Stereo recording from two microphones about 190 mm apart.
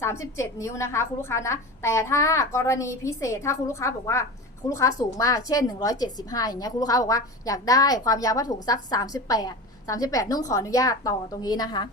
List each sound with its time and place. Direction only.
0.0 s a woman's voice: 15° left (ahead or behind)